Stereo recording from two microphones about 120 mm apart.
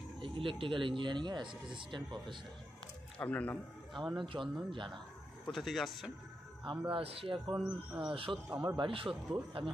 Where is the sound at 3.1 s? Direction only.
10° left (ahead or behind).